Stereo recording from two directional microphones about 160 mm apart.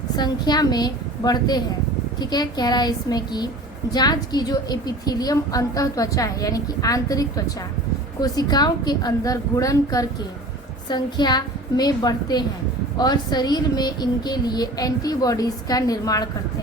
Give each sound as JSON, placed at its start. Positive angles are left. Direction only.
{"t": 0.2, "sound": "a woman's voice", "side_deg": 25}